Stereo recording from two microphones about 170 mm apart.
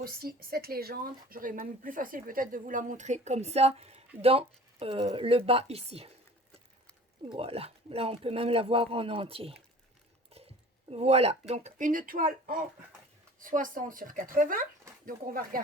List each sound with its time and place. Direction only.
0.0 s speech: 60° right (ahead or behind); by 6.1 s 35° right (ahead or behind)
7.3 s speech: 35° right (ahead or behind); by 15.6 s 55° right (ahead or behind)